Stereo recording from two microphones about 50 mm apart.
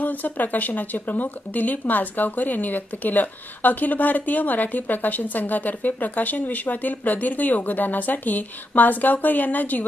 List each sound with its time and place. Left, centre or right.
0.0 s speech: left